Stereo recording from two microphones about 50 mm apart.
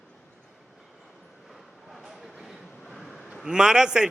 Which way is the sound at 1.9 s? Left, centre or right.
Centre.